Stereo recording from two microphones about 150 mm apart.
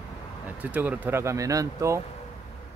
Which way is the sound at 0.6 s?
10° right (ahead or behind).